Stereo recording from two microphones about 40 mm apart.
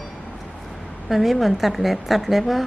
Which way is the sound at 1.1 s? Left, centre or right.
Centre.